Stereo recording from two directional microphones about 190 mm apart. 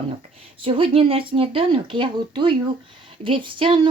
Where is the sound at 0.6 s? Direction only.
30° right (ahead or behind).